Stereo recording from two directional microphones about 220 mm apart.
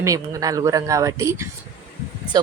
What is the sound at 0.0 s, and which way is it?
A woman's voice, 15° right (ahead or behind).